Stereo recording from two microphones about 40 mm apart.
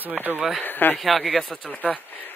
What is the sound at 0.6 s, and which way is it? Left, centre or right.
Speech, left.